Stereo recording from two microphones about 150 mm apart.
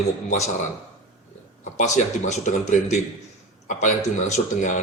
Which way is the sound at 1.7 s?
50° left (ahead or behind).